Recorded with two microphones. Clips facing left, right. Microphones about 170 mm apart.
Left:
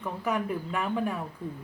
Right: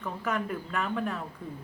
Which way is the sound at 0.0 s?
10° left (ahead or behind).